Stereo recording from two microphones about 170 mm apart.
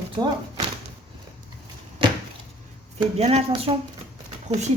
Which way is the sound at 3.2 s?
40° right (ahead or behind).